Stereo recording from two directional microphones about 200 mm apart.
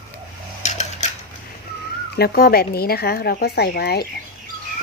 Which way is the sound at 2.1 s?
50° left (ahead or behind).